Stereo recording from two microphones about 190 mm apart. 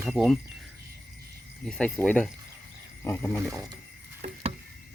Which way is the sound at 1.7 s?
5° left (ahead or behind).